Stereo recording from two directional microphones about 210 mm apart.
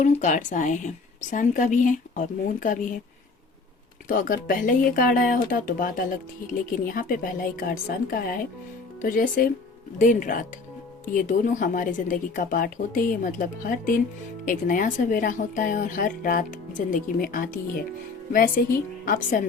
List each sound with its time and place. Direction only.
0.0 s speech: 35° left (ahead or behind)
4.1 s speech: 40° left (ahead or behind)